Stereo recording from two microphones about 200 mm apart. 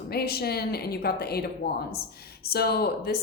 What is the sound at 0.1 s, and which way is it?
Speech, 50° left (ahead or behind).